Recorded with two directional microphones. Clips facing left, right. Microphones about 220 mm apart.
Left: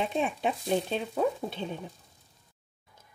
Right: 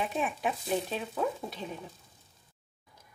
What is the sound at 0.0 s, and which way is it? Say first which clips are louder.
A woman's voice: left 3 dB; 25° left (ahead or behind).